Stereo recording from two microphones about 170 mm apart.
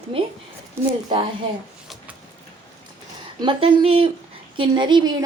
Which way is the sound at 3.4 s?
30° right (ahead or behind).